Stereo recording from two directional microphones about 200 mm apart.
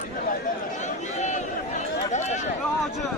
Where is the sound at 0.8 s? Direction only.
35° left (ahead or behind).